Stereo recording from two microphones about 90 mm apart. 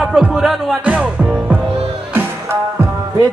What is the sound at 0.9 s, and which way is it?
Speech, 15° right (ahead or behind).